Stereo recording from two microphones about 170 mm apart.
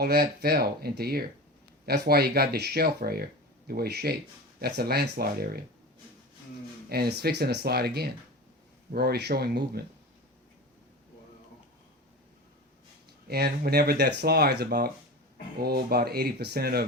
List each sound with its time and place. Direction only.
0.0 s speech: 65° right (ahead or behind)
6.9 s speech: 70° right (ahead or behind)
13.2 s speech: 65° right (ahead or behind)